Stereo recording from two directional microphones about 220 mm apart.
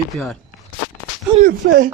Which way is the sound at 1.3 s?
40° right (ahead or behind).